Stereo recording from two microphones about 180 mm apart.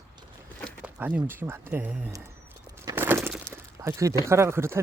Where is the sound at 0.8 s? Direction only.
10° right (ahead or behind).